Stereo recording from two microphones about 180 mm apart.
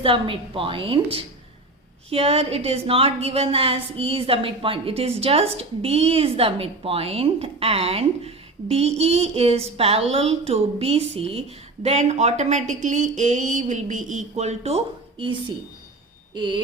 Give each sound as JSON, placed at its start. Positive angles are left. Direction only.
{"t": 0.0, "sound": "a woman's voice", "side_deg": -30}
{"t": 2.0, "sound": "a woman's voice", "side_deg": -35}
{"t": 15.2, "sound": "a woman's voice", "side_deg": -25}